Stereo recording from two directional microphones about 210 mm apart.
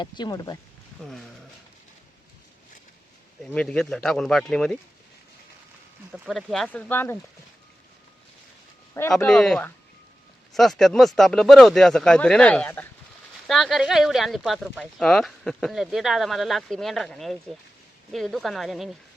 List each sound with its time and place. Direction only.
0.0 s speech: 20° left (ahead or behind)
3.4 s speech: 5° left (ahead or behind)
6.1 s speech: 5° right (ahead or behind)
9.0 s speech: 5° left (ahead or behind)